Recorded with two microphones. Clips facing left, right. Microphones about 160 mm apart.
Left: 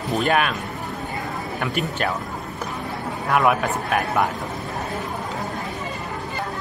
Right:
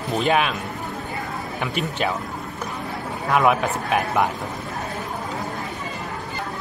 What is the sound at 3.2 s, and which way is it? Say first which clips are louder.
A man's voice: right 1 dB; centre (ahead or behind).